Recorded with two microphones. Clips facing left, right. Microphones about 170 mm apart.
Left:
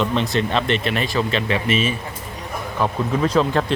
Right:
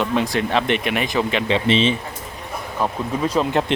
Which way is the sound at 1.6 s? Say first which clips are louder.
Right 5 dB; 30° right (ahead or behind).